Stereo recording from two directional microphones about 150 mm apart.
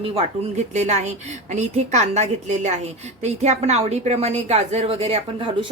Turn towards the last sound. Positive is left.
turn(degrees=-40)  # may be behind; listen again after turning